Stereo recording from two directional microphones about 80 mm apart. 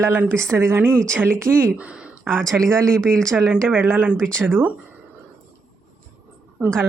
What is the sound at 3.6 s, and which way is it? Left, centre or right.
Speech, right.